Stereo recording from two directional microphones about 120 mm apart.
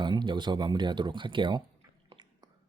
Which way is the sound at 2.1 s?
40° right (ahead or behind).